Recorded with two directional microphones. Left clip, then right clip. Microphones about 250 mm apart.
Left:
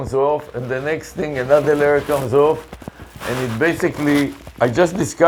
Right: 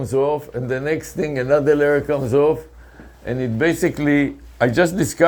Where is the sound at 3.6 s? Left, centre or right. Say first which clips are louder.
Even; right.